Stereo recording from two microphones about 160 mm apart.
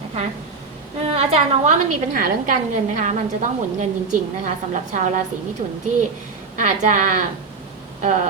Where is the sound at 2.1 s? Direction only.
65° right (ahead or behind).